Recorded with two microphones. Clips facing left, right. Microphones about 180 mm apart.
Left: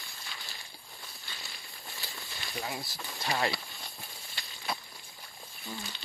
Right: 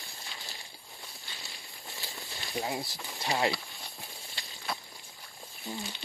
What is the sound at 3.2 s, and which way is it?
Speech, 20° right (ahead or behind).